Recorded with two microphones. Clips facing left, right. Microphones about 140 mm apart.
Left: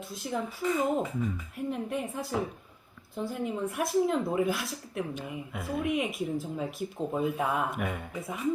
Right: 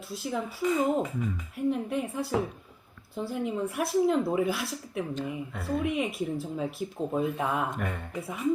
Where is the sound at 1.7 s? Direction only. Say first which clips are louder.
Right 4 dB; centre (ahead or behind).